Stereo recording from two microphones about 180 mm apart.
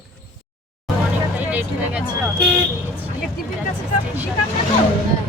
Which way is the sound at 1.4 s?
10° right (ahead or behind).